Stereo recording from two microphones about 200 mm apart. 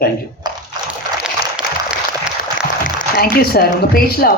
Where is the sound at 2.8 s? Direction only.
50° left (ahead or behind).